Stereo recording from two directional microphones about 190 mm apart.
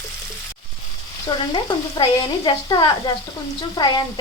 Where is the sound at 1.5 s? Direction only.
25° left (ahead or behind).